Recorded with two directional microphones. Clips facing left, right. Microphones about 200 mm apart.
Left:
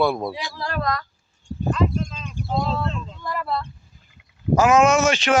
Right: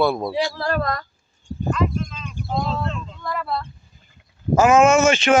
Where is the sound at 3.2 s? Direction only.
5° left (ahead or behind).